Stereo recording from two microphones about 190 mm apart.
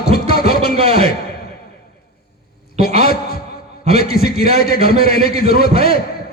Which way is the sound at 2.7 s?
55° left (ahead or behind).